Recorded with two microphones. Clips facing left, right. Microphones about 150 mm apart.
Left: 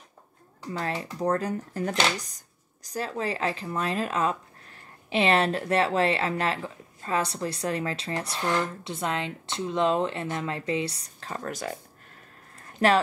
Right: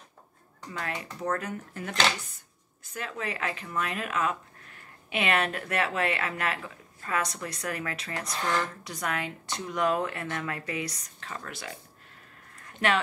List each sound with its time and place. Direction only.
0.7 s speech: 30° left (ahead or behind)
8.4 s speech: 10° left (ahead or behind)
8.8 s a woman's voice: 25° left (ahead or behind); by 11.7 s 40° left (ahead or behind)
12.7 s speech: 40° left (ahead or behind)